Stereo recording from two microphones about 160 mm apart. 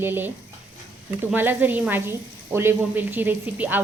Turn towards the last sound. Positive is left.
turn(degrees=-10)  # may be behind; listen again after turning